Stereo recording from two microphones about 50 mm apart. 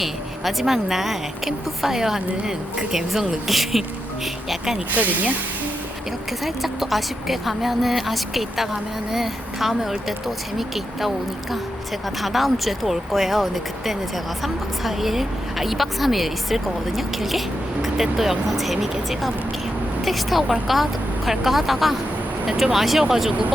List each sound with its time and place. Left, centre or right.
0.0 s a woman's voice: centre
4.9 s speech: right
6.4 s a woman's voice: centre
12.2 s a woman's voice: centre